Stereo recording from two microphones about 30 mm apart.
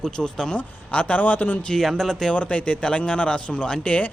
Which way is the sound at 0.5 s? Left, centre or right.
Left.